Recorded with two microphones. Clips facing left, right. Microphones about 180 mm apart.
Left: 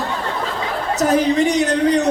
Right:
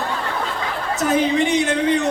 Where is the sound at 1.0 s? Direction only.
40° left (ahead or behind).